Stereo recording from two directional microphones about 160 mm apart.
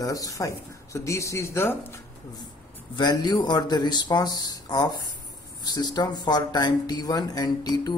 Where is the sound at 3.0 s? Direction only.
25° left (ahead or behind).